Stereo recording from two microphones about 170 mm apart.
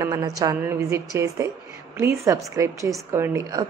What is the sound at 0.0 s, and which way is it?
A woman's voice, 20° right (ahead or behind).